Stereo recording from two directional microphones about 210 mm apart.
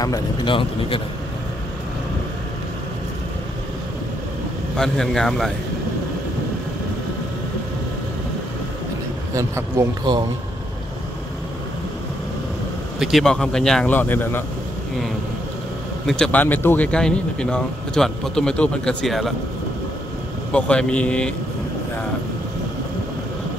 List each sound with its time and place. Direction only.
0.0 s a man's voice: 20° left (ahead or behind)
4.7 s speech: centre (ahead or behind)
9.3 s a man's voice: 15° right (ahead or behind)
13.0 s speech: centre (ahead or behind)
16.1 s speech: 5° left (ahead or behind)
20.5 s speech: 5° left (ahead or behind)